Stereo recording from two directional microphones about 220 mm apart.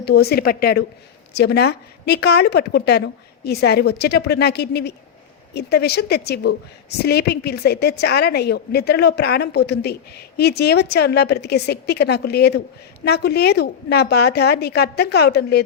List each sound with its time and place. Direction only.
0.0 s a woman's voice: 45° left (ahead or behind)